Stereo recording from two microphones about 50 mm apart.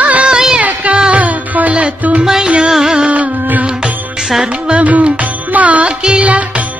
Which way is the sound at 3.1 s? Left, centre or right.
Right.